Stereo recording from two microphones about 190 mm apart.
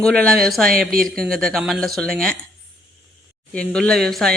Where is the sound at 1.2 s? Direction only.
Centre (ahead or behind).